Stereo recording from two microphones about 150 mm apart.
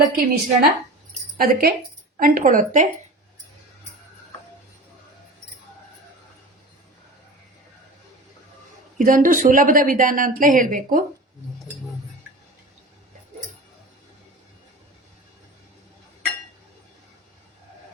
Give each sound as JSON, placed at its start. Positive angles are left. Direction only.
{"t": 0.2, "sound": "a woman's voice", "side_deg": -65}
{"t": 1.4, "sound": "speech", "side_deg": -85}
{"t": 2.1, "sound": "a woman's voice", "side_deg": -65}
{"t": 9.0, "sound": "a woman's voice", "side_deg": -65}